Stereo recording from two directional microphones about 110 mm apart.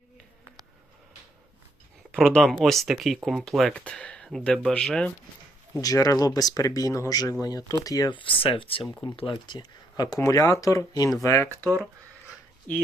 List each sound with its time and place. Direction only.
2.1 s speech: 5° left (ahead or behind)
5.7 s speech: 35° left (ahead or behind)
8.1 s speech: 55° left (ahead or behind)
9.3 s speech: 40° left (ahead or behind)
10.2 s speech: 30° left (ahead or behind)
12.7 s speech: 15° left (ahead or behind)